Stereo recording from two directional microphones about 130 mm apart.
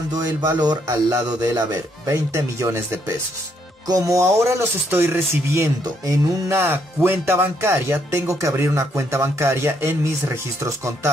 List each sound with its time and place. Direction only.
0.1 s speech: 30° right (ahead or behind)